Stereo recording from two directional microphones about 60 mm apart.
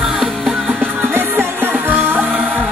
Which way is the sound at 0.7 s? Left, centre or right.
Right.